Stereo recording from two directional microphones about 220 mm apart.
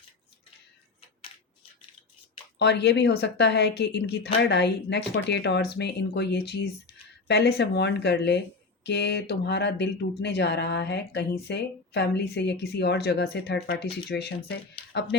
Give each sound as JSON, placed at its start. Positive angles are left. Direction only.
{"t": 2.6, "sound": "speech", "side_deg": 50}